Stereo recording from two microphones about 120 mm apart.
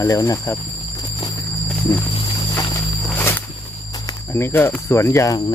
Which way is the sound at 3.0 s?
20° left (ahead or behind).